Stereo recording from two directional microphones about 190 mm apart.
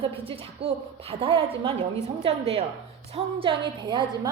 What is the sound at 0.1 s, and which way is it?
A woman's voice, 30° right (ahead or behind).